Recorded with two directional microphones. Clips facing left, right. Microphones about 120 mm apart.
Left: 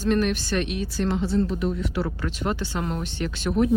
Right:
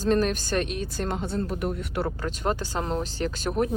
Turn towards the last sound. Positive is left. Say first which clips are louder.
# left 3 dB
turn(degrees=-40)  # may be behind; listen again after turning